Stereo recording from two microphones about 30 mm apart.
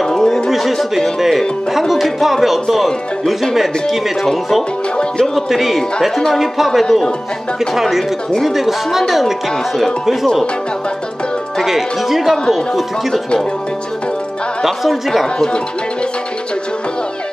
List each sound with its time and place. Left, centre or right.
0.0 s a sound: centre
0.5 s a sound: centre
1.7 s speech: centre
5.2 s speech: centre
11.6 s speech: centre
14.6 s speech: centre
15.2 s speech: left